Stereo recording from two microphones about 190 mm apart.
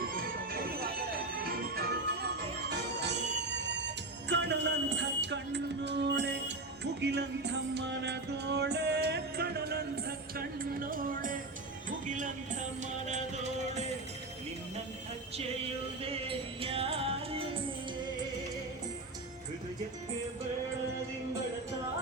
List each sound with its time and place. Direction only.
0.0 s music: 50° right (ahead or behind)
16.0 s music: 30° right (ahead or behind)